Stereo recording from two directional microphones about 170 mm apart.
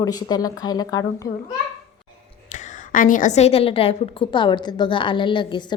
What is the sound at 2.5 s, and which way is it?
A woman's voice, 50° left (ahead or behind).